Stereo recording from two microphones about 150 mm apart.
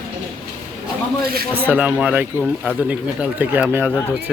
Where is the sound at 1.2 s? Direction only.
90° right.